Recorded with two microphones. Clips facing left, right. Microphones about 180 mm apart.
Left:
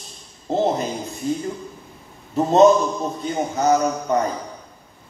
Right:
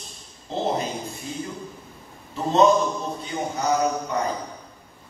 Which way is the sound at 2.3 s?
45° left (ahead or behind).